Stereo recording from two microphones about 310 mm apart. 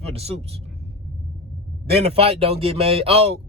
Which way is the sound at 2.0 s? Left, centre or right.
Centre.